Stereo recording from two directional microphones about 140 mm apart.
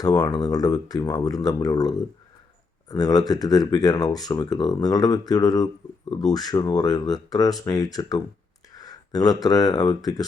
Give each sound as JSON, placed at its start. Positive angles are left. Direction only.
{"t": 0.0, "sound": "speech", "side_deg": 25}